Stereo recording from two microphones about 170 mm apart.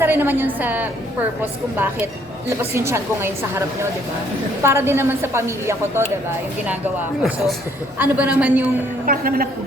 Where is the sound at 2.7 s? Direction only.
15° right (ahead or behind).